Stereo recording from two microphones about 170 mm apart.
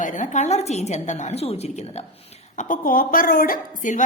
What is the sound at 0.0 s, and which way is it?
A woman's voice, 50° left (ahead or behind).